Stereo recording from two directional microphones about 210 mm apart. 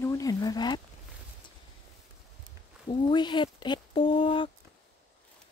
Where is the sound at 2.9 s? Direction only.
20° left (ahead or behind).